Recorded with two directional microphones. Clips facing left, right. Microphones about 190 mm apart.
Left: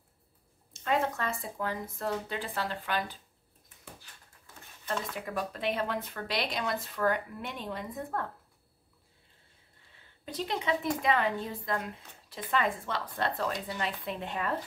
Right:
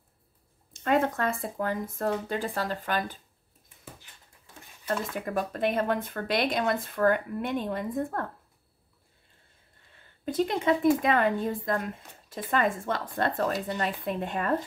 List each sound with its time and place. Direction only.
0.8 s speech: 55° right (ahead or behind)
4.8 s speech: 45° right (ahead or behind)
10.2 s speech: 50° right (ahead or behind)